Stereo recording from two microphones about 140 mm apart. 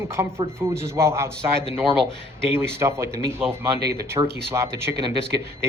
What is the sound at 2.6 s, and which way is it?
Speech, 20° right (ahead or behind).